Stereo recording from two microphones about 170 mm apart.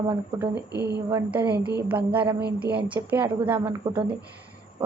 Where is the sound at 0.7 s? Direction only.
75° right (ahead or behind).